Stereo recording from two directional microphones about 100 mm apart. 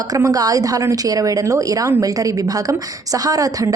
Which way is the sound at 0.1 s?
35° right (ahead or behind).